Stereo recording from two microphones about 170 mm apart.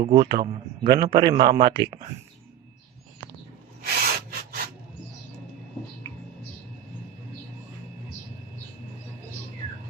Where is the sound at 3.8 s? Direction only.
65° right (ahead or behind).